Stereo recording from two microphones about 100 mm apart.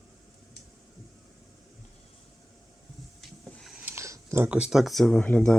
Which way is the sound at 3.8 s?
25° right (ahead or behind).